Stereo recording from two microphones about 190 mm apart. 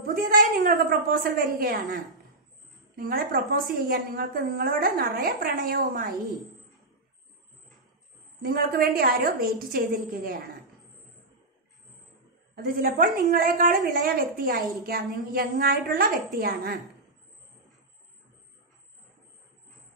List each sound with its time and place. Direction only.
0.0 s a woman's voice: 50° right (ahead or behind)
3.0 s a woman's voice: 50° right (ahead or behind)
8.5 s a woman's voice: 50° right (ahead or behind)
12.5 s a woman's voice: 50° right (ahead or behind)